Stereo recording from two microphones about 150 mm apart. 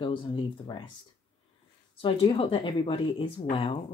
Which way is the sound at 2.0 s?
35° left (ahead or behind).